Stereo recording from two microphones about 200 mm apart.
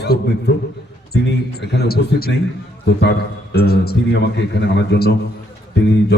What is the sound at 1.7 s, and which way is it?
A man's voice, 50° left (ahead or behind).